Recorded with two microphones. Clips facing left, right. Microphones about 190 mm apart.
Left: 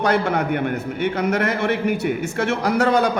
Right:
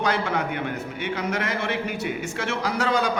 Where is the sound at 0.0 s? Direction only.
60° left (ahead or behind).